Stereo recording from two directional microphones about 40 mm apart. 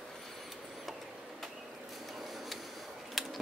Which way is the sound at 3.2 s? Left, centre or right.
Centre.